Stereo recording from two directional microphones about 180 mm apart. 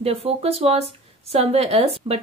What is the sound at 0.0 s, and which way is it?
Speech, 35° right (ahead or behind).